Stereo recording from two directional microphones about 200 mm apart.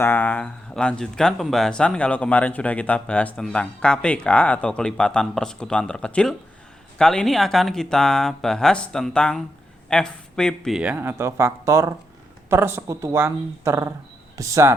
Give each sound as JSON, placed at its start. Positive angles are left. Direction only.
{"t": 0.0, "sound": "speech", "side_deg": 10}